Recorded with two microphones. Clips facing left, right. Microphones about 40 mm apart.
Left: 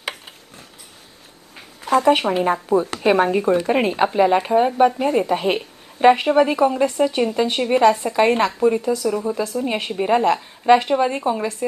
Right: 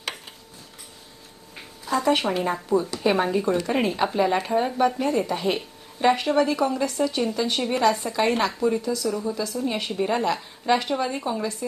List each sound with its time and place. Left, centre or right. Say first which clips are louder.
1.8 s a sound: left 7 dB; left
2.1 s a woman's voice: left 4 dB; left
2.4 s speech: left 5 dB; left
3.6 s a woman's voice: left 5 dB; left
8.6 s a woman's voice: left 5 dB; left